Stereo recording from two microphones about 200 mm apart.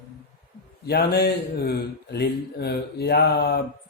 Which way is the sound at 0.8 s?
50° left (ahead or behind).